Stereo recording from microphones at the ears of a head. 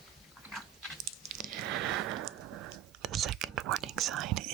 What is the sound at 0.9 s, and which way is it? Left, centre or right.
Squish, right.